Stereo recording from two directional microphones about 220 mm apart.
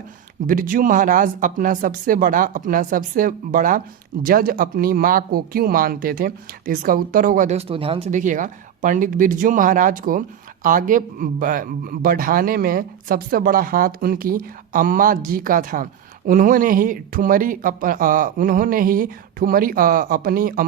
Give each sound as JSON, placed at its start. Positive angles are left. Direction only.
{"t": 0.4, "sound": "speech", "side_deg": -40}